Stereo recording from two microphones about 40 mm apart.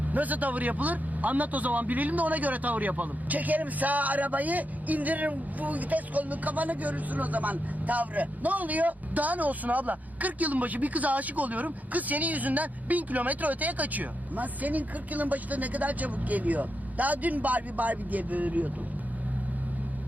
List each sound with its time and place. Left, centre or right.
0.1 s a man's voice: right